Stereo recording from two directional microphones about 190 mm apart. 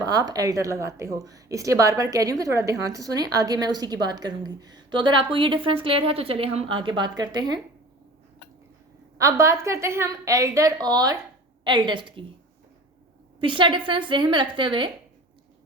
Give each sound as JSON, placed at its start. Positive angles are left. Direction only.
{"t": 0.0, "sound": "a woman's voice", "side_deg": -20}
{"t": 9.1, "sound": "a woman's voice", "side_deg": -15}
{"t": 13.4, "sound": "a woman's voice", "side_deg": -25}